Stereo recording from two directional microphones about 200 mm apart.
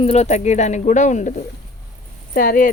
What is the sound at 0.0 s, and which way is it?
Speech, 30° left (ahead or behind).